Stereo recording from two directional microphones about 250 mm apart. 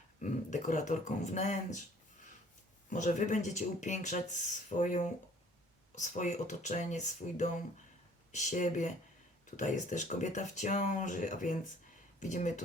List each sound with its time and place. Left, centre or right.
0.2 s speech: left
2.9 s speech: left